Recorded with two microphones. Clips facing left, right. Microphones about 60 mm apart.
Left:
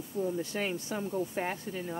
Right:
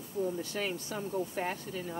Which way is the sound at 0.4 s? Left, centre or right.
Left.